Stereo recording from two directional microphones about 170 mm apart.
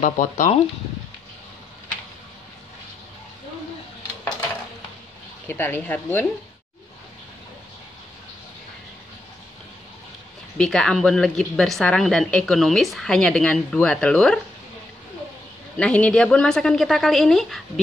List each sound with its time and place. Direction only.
0.0 s speech: 45° left (ahead or behind)
5.5 s speech: 10° left (ahead or behind)
10.6 s a woman's voice: 5° left (ahead or behind)
15.8 s a woman's voice: 5° left (ahead or behind)